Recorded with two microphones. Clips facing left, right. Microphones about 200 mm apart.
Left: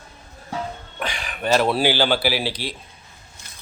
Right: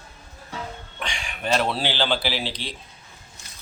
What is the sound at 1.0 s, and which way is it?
Speech, centre (ahead or behind).